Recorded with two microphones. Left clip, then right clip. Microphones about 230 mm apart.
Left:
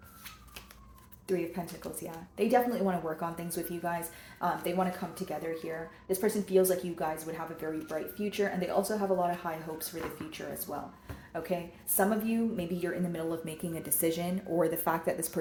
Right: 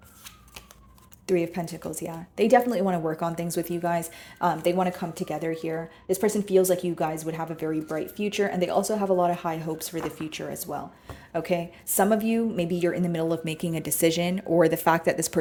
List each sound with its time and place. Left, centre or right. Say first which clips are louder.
1.3 s a woman's voice: right 8 dB; right